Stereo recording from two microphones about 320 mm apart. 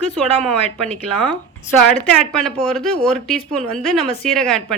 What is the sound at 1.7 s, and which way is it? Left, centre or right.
A woman's voice, centre.